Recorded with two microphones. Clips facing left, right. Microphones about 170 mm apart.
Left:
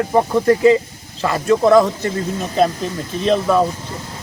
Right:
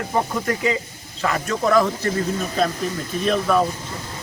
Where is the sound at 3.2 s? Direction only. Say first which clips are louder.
Left 4 dB; 25° left (ahead or behind).